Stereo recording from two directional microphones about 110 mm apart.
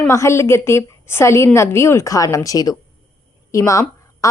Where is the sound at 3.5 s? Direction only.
30° left (ahead or behind).